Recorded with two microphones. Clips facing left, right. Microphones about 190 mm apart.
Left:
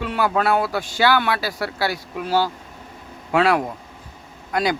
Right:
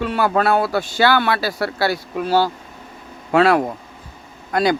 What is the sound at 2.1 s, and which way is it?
Speech, 40° right (ahead or behind).